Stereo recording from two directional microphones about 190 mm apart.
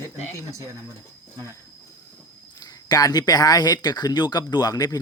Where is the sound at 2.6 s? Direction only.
20° left (ahead or behind).